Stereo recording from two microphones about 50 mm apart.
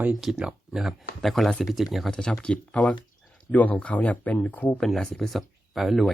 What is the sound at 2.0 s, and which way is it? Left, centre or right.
Speech, centre.